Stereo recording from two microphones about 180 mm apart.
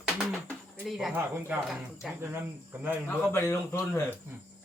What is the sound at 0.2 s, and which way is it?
Bird, 5° left (ahead or behind).